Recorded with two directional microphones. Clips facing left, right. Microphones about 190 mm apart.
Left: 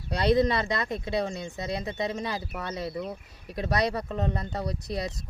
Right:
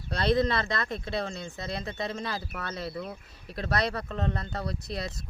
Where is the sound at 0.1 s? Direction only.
15° left (ahead or behind).